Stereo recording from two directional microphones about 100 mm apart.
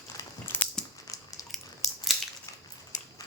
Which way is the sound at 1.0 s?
35° left (ahead or behind).